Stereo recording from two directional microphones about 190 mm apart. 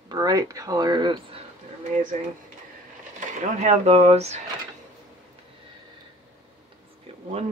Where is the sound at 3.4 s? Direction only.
35° right (ahead or behind).